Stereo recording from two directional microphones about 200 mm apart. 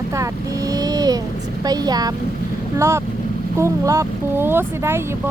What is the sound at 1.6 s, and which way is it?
A woman's voice, 20° right (ahead or behind).